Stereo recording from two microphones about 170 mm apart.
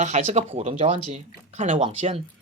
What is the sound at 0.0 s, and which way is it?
Speech, 40° right (ahead or behind).